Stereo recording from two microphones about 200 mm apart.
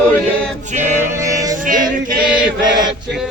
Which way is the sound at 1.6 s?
40° right (ahead or behind).